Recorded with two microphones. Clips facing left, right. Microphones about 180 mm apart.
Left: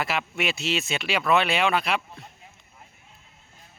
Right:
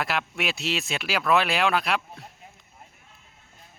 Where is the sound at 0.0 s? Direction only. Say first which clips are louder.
Left 1 dB; centre (ahead or behind).